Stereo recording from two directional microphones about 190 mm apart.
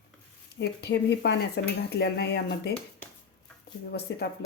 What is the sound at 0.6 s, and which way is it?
Speech, 60° left (ahead or behind).